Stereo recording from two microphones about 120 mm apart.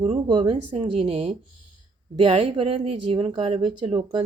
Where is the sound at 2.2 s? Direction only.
45° right (ahead or behind).